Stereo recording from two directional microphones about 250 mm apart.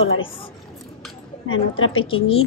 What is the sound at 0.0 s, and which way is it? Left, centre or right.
Speech, left.